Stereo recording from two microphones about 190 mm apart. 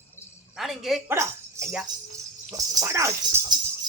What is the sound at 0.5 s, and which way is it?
Speech, centre (ahead or behind).